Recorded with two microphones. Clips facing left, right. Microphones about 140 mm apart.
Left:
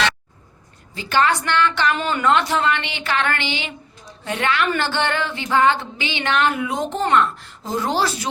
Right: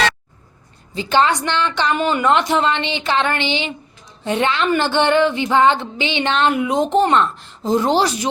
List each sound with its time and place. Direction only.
0.9 s music: 20° right (ahead or behind)